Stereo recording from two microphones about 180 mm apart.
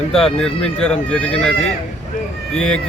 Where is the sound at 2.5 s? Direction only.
5° left (ahead or behind).